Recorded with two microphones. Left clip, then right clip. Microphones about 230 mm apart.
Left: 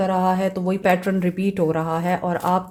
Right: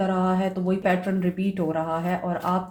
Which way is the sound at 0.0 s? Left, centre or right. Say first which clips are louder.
Left 5 dB; left.